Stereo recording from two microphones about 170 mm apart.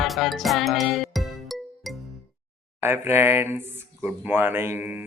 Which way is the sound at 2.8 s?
15° right (ahead or behind).